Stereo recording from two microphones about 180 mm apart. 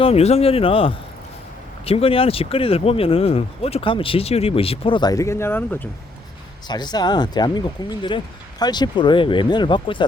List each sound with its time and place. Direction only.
0.0 s speech: 35° left (ahead or behind); by 5.9 s 10° left (ahead or behind)
6.7 s speech: 25° left (ahead or behind)